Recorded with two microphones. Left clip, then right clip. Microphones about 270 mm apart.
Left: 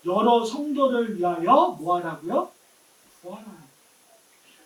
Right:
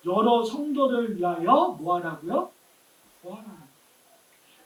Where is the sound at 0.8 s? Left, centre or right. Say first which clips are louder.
Left 2 dB; centre.